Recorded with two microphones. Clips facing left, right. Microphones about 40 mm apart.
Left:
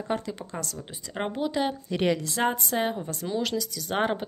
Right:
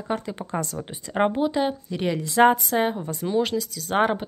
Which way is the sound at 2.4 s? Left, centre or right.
Right.